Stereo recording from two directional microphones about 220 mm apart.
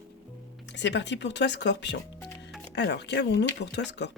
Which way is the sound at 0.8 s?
55° left (ahead or behind).